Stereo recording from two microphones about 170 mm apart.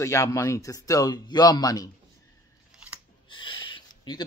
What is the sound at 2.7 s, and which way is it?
Scissors, 10° right (ahead or behind).